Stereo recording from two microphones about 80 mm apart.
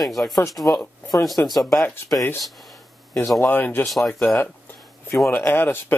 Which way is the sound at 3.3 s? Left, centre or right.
Left.